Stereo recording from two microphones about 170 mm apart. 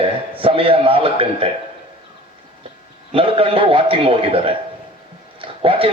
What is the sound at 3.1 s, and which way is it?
A man's voice, 30° right (ahead or behind).